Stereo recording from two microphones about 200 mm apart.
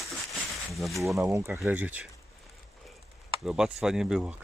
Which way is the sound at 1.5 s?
5° right (ahead or behind).